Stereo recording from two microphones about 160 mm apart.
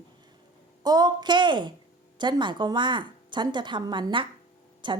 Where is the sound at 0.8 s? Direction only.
25° right (ahead or behind).